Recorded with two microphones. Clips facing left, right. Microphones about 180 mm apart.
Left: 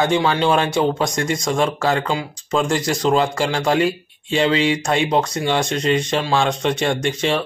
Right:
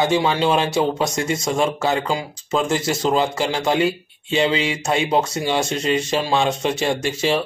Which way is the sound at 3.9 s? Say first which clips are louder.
Left 1 dB; 30° left (ahead or behind).